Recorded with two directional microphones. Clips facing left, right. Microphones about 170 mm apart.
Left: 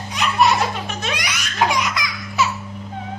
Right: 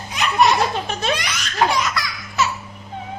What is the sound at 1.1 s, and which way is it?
Laughter, 10° left (ahead or behind).